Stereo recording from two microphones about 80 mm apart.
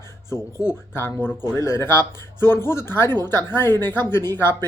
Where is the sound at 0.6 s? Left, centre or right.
Left.